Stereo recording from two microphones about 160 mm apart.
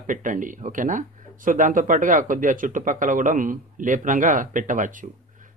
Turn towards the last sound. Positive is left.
turn(degrees=-55)  # may be behind; listen again after turning